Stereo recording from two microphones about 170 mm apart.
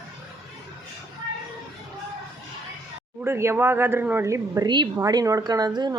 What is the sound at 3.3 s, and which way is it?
A woman's voice, 15° right (ahead or behind).